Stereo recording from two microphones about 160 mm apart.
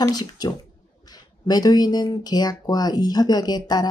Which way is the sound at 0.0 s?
25° left (ahead or behind).